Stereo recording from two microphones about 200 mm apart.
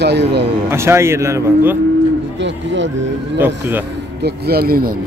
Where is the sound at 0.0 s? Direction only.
55° right (ahead or behind).